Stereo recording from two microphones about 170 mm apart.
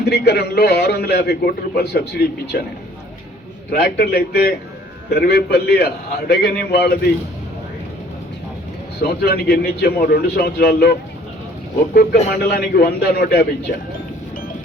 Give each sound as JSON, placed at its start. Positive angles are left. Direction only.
{"t": 0.0, "sound": "a man's voice", "side_deg": 70}
{"t": 3.7, "sound": "a man's voice", "side_deg": 70}
{"t": 9.0, "sound": "a man's voice", "side_deg": 65}
{"t": 11.9, "sound": "a man's voice", "side_deg": 70}